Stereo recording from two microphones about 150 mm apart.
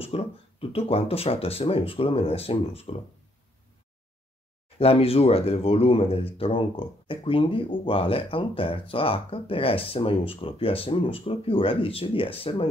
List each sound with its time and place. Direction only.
0.0 s speech: 40° left (ahead or behind)
4.7 s speech: 40° left (ahead or behind)